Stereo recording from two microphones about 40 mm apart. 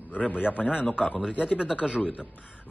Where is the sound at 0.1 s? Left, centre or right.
Left.